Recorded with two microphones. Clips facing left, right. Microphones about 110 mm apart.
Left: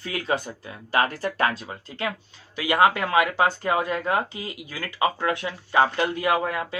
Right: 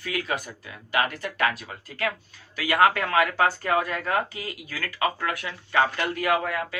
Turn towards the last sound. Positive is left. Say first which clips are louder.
# left 1 dB
turn(degrees=25)  # may be behind; listen again after turning